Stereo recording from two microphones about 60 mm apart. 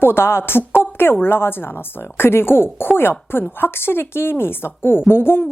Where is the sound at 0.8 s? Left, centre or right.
Left.